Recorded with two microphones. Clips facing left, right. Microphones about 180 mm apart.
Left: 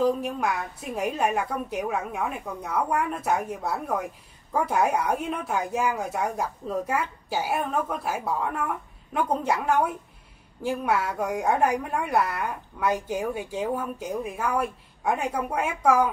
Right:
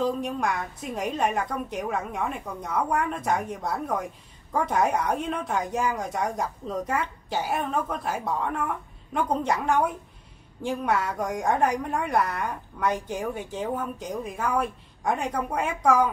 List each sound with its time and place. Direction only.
0.0 s a woman's voice: 5° left (ahead or behind)